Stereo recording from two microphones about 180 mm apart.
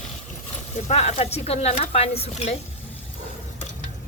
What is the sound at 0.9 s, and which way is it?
Speech, 35° left (ahead or behind).